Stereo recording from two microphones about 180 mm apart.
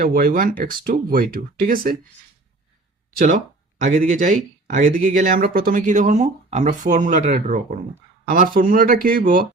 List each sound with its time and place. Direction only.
0.0 s speech: 55° right (ahead or behind)
3.9 s speech: 45° right (ahead or behind)